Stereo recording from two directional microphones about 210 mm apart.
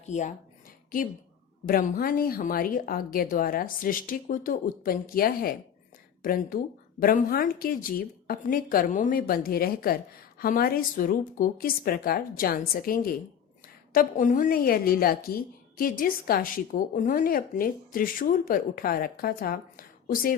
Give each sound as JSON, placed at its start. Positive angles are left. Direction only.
{"t": 0.0, "sound": "speech", "side_deg": 35}
{"t": 1.6, "sound": "a woman's voice", "side_deg": 45}